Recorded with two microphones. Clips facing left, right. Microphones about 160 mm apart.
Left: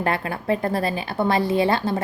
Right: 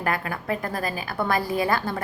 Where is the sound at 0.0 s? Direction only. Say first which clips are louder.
Left 3 dB; 30° left (ahead or behind).